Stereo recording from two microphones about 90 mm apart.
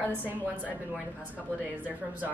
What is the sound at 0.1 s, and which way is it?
Speech, 20° right (ahead or behind).